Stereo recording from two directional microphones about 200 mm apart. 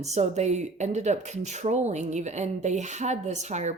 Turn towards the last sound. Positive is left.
turn(degrees=-35)  # may be behind; listen again after turning